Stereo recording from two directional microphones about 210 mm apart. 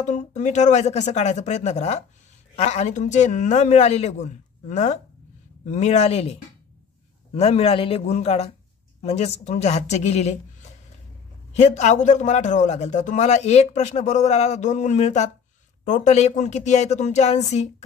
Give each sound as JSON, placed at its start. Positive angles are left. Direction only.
{"t": 0.0, "sound": "a man's voice", "side_deg": 35}
{"t": 7.3, "sound": "a man's voice", "side_deg": 30}